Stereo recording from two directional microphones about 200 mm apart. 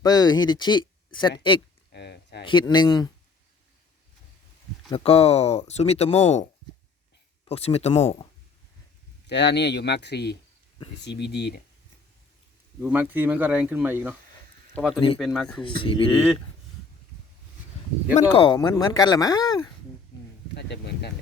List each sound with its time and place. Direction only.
0.0 s speech: 20° left (ahead or behind)
1.9 s a sound: 55° left (ahead or behind)
2.4 s speech: 25° left (ahead or behind)
4.9 s speech: 30° left (ahead or behind)
9.2 s speech: 60° left (ahead or behind)
12.8 s speech: 10° right (ahead or behind)
15.6 s speech: 25° left (ahead or behind)
18.1 s speech: 25° left (ahead or behind)
20.5 s speech: 55° left (ahead or behind)